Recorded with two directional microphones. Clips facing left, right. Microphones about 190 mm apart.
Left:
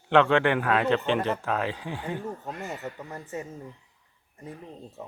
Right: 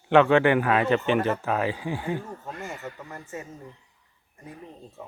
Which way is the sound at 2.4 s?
20° left (ahead or behind).